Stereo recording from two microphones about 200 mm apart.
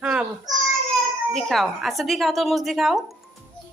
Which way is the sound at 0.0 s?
5° right (ahead or behind).